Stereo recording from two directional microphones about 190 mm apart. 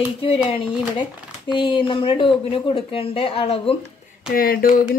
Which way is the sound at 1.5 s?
25° left (ahead or behind).